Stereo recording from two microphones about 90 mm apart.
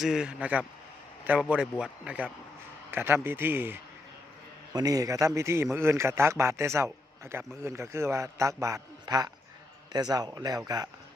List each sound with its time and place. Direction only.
0.0 s a man's voice: 5° right (ahead or behind)
2.9 s a man's voice: 25° right (ahead or behind)
4.7 s a man's voice: 45° right (ahead or behind)